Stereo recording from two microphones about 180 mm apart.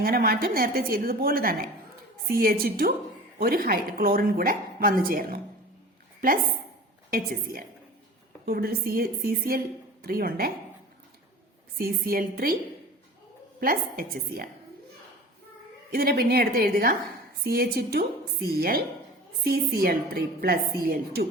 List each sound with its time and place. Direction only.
0.0 s a woman's voice: 55° right (ahead or behind)
11.8 s a woman's voice: 55° right (ahead or behind)
13.6 s a woman's voice: 50° right (ahead or behind)
15.9 s a woman's voice: 55° right (ahead or behind)